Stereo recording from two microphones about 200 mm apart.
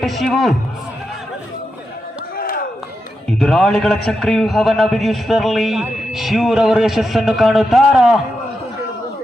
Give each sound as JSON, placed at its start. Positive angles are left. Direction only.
{"t": 0.0, "sound": "a man's voice", "side_deg": 0}
{"t": 2.3, "sound": "a sound", "side_deg": 45}
{"t": 3.2, "sound": "a man's voice", "side_deg": 5}